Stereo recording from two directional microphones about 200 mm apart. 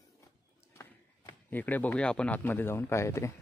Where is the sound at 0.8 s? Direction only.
10° left (ahead or behind).